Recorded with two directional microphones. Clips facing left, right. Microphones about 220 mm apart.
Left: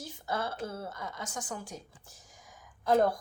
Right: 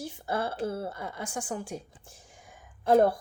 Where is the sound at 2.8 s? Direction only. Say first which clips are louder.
Right 4 dB; 30° right (ahead or behind).